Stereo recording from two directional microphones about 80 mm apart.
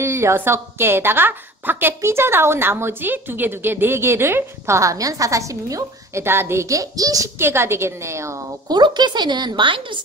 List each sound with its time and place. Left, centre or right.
0.0 s a woman's voice: right
6.2 s a woman's voice: right
7.3 s a woman's voice: right
8.6 s speech: right